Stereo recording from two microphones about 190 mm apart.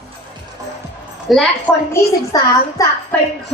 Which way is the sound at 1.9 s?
15° left (ahead or behind).